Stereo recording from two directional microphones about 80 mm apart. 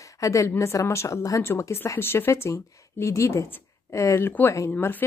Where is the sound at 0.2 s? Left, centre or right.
Left.